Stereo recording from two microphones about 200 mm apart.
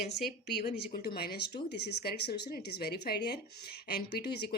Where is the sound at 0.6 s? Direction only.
45° left (ahead or behind).